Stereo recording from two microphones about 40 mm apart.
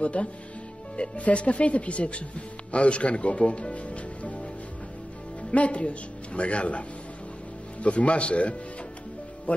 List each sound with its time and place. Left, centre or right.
0.0 s speech: left
5.5 s speech: left
7.8 s speech: left